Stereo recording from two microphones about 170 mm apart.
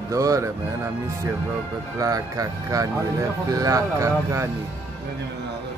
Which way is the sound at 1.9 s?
20° right (ahead or behind).